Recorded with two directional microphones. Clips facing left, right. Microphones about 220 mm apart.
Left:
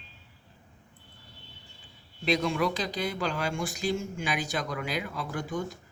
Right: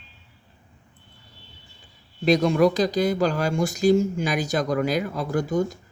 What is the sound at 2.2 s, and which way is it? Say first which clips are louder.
Speech: right 9 dB; 40° right (ahead or behind).